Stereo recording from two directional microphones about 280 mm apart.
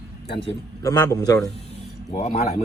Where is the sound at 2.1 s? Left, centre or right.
Left.